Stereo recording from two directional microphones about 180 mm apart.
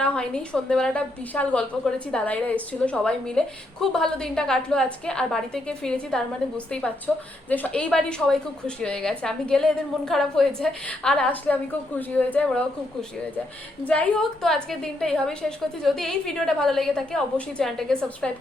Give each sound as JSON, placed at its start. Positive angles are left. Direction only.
{"t": 0.0, "sound": "a woman's voice", "side_deg": 5}